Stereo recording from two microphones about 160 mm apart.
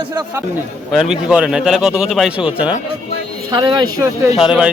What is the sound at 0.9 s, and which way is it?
A man's voice, 5° right (ahead or behind).